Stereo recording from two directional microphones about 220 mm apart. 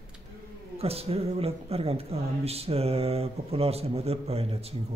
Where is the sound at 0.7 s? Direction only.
25° right (ahead or behind).